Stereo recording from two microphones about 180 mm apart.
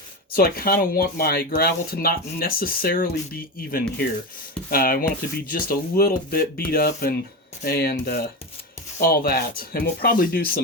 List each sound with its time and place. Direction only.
0.3 s speech: 55° left (ahead or behind)